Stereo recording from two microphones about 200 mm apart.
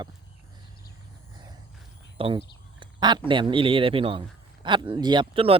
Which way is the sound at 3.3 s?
25° right (ahead or behind).